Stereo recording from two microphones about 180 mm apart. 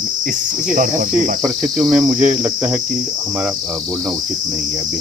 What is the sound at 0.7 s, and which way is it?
Cricket, 45° right (ahead or behind).